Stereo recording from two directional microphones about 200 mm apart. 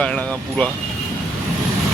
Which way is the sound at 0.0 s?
5° left (ahead or behind).